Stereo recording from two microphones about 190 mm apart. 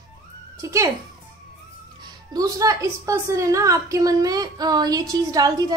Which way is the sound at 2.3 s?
20° right (ahead or behind).